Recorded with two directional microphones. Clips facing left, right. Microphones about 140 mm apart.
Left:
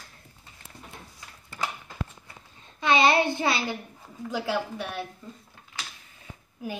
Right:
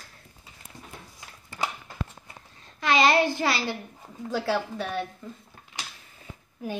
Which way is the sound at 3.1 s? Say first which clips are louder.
Right 1 dB; 25° left (ahead or behind).